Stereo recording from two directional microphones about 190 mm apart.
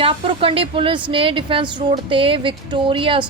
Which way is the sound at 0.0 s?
30° right (ahead or behind).